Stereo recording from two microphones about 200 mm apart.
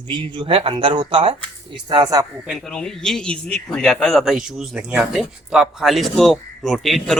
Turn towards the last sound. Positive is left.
turn(degrees=0)  # may be behind; listen again after turning